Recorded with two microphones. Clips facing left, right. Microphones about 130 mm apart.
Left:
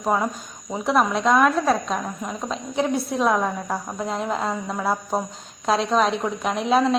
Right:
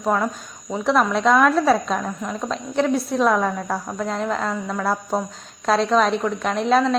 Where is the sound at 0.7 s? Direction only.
Centre (ahead or behind).